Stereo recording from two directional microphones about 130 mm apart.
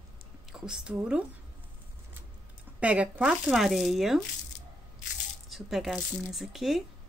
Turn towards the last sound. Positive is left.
turn(degrees=0)  # may be behind; listen again after turning